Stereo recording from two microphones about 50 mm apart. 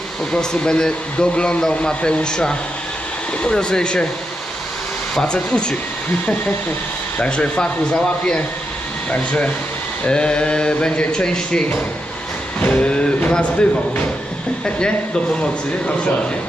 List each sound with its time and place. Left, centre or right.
0.3 s speech: centre
5.2 s speech: centre
7.2 s speech: left
10.1 s speech: centre